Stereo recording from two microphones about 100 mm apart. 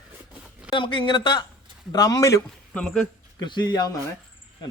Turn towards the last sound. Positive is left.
turn(degrees=40)  # may be behind; listen again after turning